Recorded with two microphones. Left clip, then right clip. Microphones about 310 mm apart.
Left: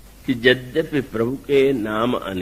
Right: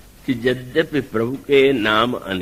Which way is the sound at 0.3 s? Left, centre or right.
Right.